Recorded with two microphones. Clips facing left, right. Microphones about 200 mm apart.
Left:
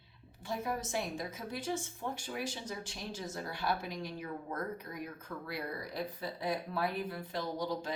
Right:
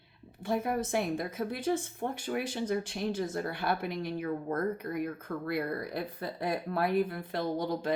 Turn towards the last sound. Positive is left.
turn(degrees=-55)  # may be behind; listen again after turning